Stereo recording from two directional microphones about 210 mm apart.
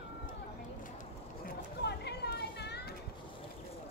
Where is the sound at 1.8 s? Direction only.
50° left (ahead or behind).